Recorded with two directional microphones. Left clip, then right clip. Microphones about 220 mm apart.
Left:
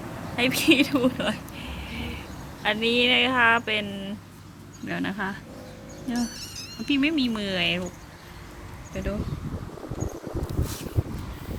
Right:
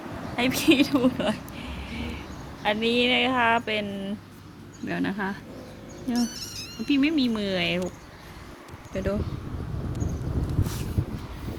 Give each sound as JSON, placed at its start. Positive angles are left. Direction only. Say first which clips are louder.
{"t": 0.3, "sound": "a sound", "louder": "left 1 dB", "side_deg": -5}
{"t": 2.6, "sound": "speech", "louder": "left 1 dB", "side_deg": -5}
{"t": 8.9, "sound": "speech", "louder": "right 4 dB", "side_deg": -25}